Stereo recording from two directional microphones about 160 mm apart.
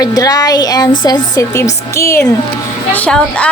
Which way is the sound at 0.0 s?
25° left (ahead or behind).